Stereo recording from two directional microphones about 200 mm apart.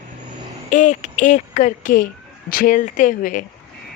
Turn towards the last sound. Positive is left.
turn(degrees=40)  # may be behind; listen again after turning